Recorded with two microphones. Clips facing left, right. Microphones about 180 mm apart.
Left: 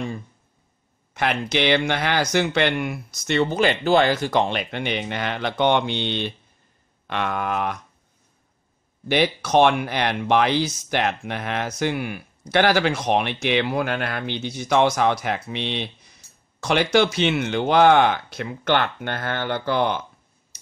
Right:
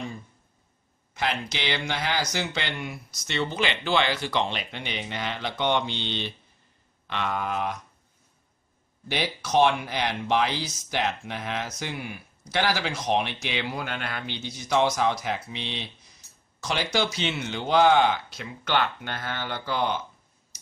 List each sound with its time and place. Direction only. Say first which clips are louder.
1.1 s speech: left 6 dB; 60° left (ahead or behind)
9.1 s speech: left 6 dB; 60° left (ahead or behind)